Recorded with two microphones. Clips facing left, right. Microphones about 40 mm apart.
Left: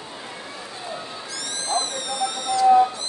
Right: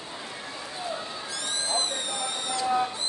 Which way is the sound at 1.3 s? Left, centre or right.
Right.